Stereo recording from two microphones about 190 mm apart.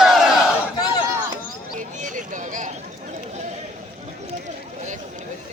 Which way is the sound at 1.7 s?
40° right (ahead or behind).